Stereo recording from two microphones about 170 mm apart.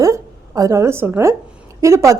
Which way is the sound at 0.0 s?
20° right (ahead or behind).